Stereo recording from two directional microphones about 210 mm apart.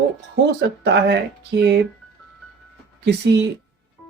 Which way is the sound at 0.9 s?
55° right (ahead or behind).